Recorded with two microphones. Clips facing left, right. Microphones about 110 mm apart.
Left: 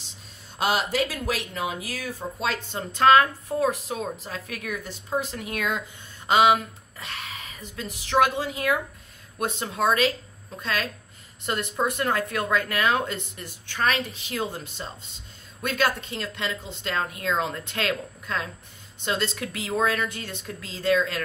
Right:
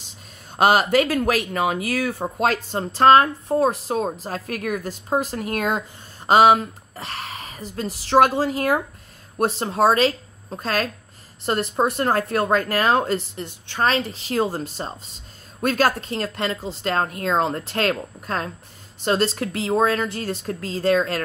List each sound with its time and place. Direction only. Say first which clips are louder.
0.5 s speech: right 8 dB; 50° right (ahead or behind)
2.6 s a woman's voice: right 2 dB; 35° right (ahead or behind)